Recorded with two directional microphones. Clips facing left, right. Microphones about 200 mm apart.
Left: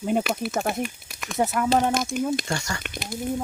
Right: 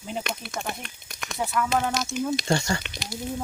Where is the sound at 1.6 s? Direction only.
35° left (ahead or behind).